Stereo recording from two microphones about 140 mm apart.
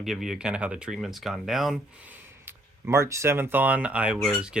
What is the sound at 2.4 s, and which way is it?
Speech, 20° right (ahead or behind).